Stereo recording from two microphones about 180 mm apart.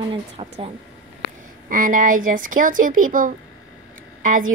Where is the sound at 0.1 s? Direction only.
30° right (ahead or behind).